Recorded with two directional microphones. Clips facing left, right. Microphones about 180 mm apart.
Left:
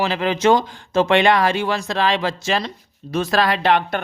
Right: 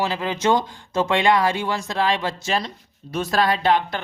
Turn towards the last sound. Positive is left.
turn(degrees=70)  # may be behind; listen again after turning